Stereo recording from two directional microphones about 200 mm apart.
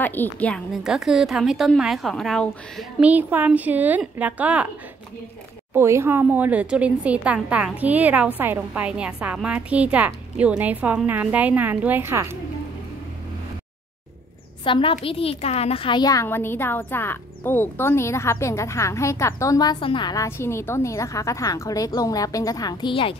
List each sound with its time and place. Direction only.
0.0 s a woman's voice: 10° left (ahead or behind); by 4.6 s 5° right (ahead or behind)
5.7 s a woman's voice: 15° right (ahead or behind)
14.6 s a woman's voice: 25° left (ahead or behind)